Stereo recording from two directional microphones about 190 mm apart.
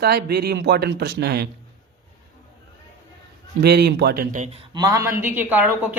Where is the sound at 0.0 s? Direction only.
55° right (ahead or behind).